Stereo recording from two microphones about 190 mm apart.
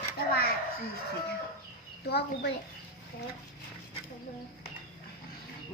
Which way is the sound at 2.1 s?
60° left (ahead or behind).